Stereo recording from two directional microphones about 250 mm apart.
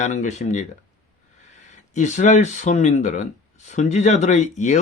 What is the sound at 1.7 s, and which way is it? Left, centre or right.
Speech, left.